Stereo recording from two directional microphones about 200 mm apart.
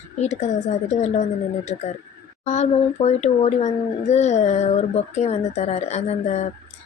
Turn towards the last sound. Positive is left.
turn(degrees=35)  # may be behind; listen again after turning